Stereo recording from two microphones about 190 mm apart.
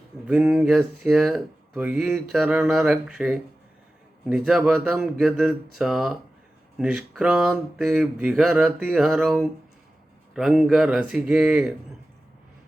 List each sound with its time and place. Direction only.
0.3 s speech: 5° right (ahead or behind)